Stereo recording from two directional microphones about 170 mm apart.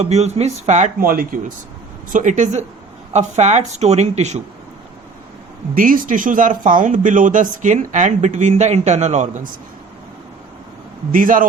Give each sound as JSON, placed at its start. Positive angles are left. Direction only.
{"t": 0.0, "sound": "speech", "side_deg": -40}
{"t": 2.1, "sound": "speech", "side_deg": -45}
{"t": 5.7, "sound": "speech", "side_deg": -55}
{"t": 11.1, "sound": "speech", "side_deg": -50}